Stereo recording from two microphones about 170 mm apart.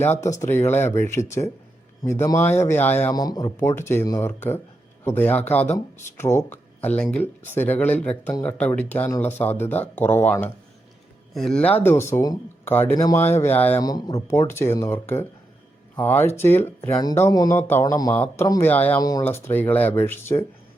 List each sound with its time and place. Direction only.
0.5 s speech: 15° left (ahead or behind)
3.2 s speech: 20° left (ahead or behind)
18.1 s speech: 10° left (ahead or behind)
18.4 s speech: 20° left (ahead or behind)
18.7 s speech: 10° left (ahead or behind)
18.9 s speech: 20° left (ahead or behind)